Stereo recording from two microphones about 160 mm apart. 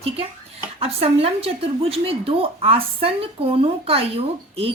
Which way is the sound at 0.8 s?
40° right (ahead or behind).